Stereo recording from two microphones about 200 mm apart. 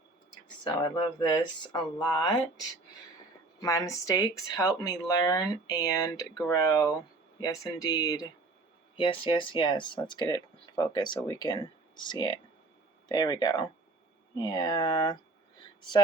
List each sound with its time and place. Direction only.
0.6 s speech: 20° left (ahead or behind)